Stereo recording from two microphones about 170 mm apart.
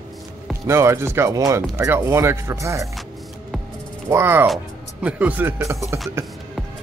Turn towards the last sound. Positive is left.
turn(degrees=-15)  # may be behind; listen again after turning